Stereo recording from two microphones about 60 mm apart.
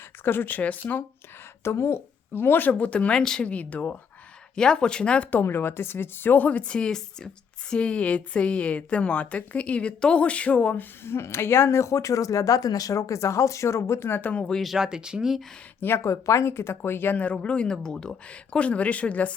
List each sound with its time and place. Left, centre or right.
0.3 s speech: left
1.6 s speech: left; by 3.5 s centre
3.5 s speech: left
4.5 s speech: centre
5.4 s speech: left
11.0 s speech: left
14.2 s speech: left
14.6 s speech: centre
16.0 s speech: left